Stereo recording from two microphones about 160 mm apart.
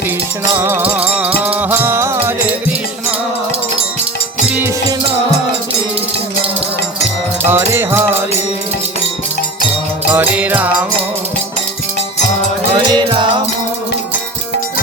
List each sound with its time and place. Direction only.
0.5 s music: 15° right (ahead or behind)
7.4 s music: 15° right (ahead or behind)
10.1 s music: 10° right (ahead or behind)
12.7 s music: 30° right (ahead or behind)